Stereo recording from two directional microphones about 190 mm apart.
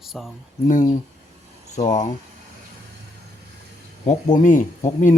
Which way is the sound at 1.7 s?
40° left (ahead or behind).